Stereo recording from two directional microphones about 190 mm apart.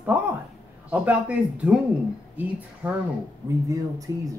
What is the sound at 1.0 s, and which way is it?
Speech, 5° right (ahead or behind).